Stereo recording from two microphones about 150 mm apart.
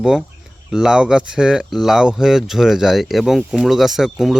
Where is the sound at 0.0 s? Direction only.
5° right (ahead or behind).